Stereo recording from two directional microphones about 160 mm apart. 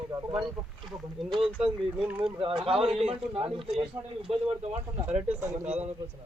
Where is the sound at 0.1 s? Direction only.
20° right (ahead or behind).